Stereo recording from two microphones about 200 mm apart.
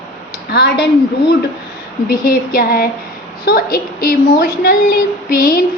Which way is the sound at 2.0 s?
45° left (ahead or behind).